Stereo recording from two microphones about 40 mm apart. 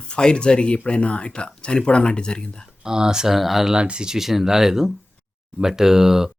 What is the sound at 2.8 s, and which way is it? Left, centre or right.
Speech, centre.